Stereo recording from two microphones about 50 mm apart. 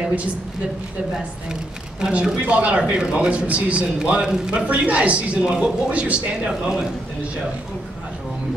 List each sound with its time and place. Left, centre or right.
1.5 s speech: centre
4.0 s speech: centre
6.4 s speech: centre